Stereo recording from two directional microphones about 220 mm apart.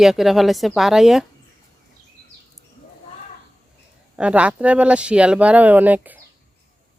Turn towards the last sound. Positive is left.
turn(degrees=-5)  # may be behind; listen again after turning